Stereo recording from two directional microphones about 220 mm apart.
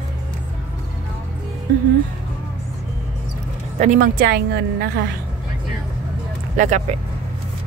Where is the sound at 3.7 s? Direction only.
35° right (ahead or behind).